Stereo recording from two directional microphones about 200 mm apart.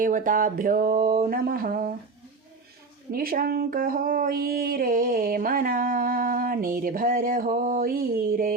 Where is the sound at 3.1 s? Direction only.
45° right (ahead or behind).